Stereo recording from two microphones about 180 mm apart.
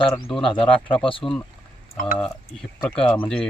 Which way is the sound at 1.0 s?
30° left (ahead or behind).